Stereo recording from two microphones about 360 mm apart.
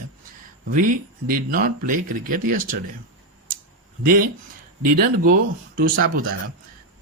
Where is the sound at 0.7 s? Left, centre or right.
Right.